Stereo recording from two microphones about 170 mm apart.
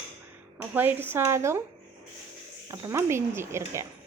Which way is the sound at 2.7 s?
20° right (ahead or behind).